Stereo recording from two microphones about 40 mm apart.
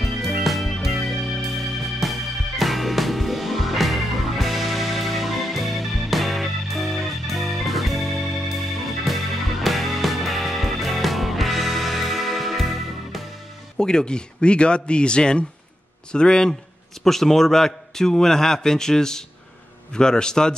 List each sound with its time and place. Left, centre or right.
0.0 s music: centre
13.7 s speech: centre
17.0 s a man's voice: centre